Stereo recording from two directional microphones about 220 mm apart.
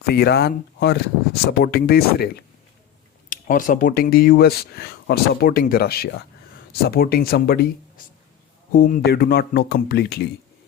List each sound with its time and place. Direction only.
0.0 s speech: 45° left (ahead or behind)